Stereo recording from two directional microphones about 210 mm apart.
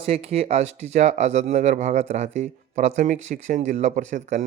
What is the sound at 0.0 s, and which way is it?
Speech, 30° right (ahead or behind).